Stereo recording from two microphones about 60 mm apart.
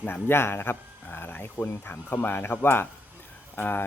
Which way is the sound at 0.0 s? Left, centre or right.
Left.